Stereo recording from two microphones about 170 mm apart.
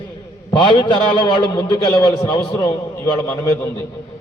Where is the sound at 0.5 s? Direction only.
30° left (ahead or behind).